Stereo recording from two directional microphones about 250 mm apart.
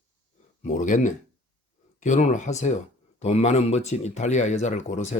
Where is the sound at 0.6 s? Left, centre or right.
Left.